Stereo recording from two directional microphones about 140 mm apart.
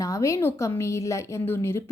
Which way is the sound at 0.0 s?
20° left (ahead or behind).